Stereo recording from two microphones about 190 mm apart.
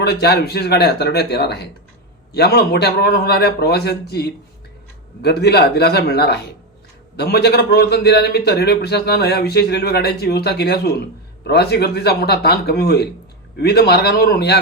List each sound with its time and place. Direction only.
0.0 s a man's voice: 60° left (ahead or behind)